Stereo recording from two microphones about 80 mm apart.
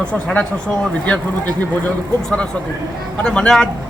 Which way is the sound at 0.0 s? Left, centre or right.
Centre.